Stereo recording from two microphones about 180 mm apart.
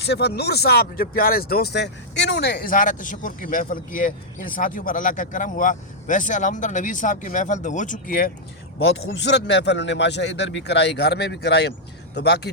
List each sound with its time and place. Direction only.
0.0 s speech: 65° left (ahead or behind)
9.0 s speech: 70° left (ahead or behind)